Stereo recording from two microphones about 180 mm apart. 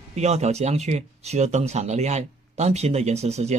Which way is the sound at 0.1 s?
40° right (ahead or behind).